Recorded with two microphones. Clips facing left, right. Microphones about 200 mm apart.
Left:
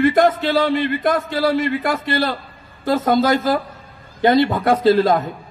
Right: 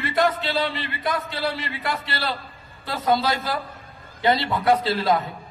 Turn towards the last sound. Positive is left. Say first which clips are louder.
# left 8 dB
turn(degrees=50)  # may be behind; listen again after turning